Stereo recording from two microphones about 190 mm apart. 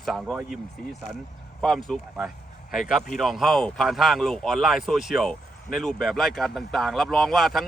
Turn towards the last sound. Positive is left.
turn(degrees=0)  # may be behind; listen again after turning